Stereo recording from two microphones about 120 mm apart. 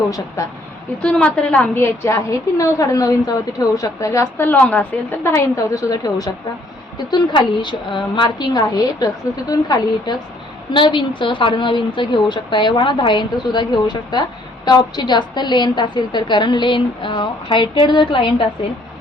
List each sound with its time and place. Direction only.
0.4 s a woman's voice: 25° left (ahead or behind)
1.0 s a woman's voice: 10° left (ahead or behind); by 18.4 s 45° left (ahead or behind)